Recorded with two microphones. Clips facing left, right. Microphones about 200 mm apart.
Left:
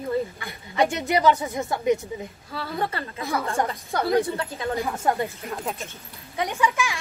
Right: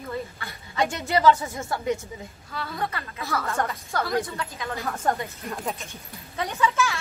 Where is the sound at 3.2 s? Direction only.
20° left (ahead or behind).